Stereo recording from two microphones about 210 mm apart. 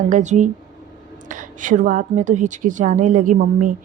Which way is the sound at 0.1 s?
35° right (ahead or behind).